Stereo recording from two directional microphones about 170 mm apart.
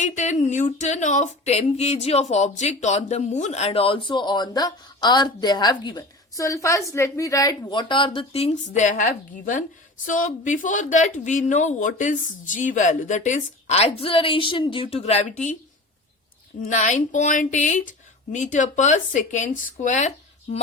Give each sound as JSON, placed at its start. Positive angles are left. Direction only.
{"t": 0.0, "sound": "a sound", "side_deg": 45}
{"t": 10.1, "sound": "a woman's voice", "side_deg": 50}
{"t": 16.6, "sound": "a woman's voice", "side_deg": 45}